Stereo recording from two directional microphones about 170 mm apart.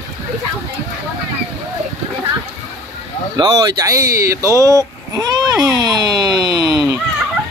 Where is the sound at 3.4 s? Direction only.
20° right (ahead or behind).